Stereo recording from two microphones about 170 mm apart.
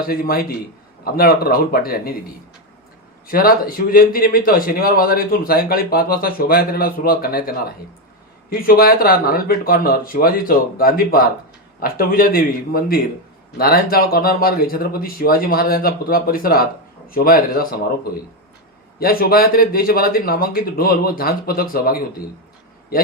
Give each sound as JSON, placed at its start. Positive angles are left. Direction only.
{"t": 0.0, "sound": "a man's voice", "side_deg": 60}
{"t": 3.2, "sound": "a man's voice", "side_deg": 60}